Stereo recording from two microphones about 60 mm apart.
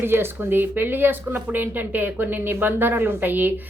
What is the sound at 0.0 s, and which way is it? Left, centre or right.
A woman's voice, right.